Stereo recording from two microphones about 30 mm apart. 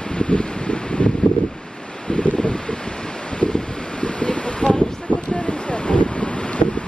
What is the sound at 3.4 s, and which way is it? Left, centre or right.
Wind, left.